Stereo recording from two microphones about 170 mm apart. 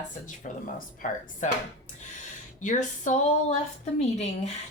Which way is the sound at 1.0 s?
50° left (ahead or behind).